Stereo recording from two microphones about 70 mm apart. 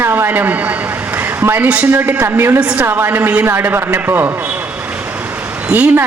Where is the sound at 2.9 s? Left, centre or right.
Right.